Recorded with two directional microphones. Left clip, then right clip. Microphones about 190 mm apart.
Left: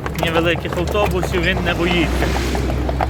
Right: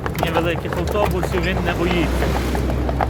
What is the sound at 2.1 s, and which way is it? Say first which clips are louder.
Speech: left 1 dB; 65° right (ahead or behind).